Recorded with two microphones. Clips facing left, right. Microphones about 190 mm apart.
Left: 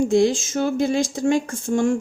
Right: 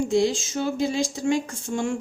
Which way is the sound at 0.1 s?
50° left (ahead or behind).